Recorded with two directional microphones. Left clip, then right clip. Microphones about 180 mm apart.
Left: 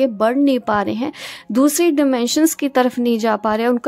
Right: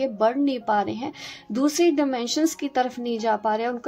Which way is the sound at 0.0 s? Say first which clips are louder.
Left 6 dB; 40° left (ahead or behind).